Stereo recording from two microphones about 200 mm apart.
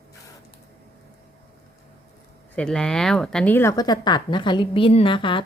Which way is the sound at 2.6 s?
5° left (ahead or behind).